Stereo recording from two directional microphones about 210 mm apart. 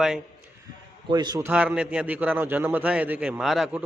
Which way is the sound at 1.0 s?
20° right (ahead or behind).